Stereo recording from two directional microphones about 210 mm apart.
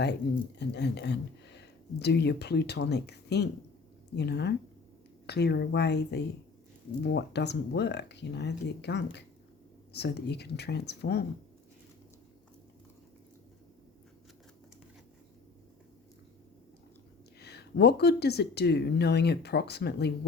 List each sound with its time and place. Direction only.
0.6 s speech: 55° left (ahead or behind)
17.4 s speech: 50° left (ahead or behind)